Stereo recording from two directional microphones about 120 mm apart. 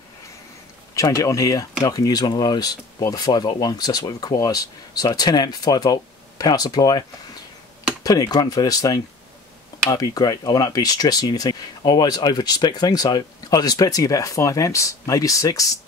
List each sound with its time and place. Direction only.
0.9 s speech: 30° left (ahead or behind)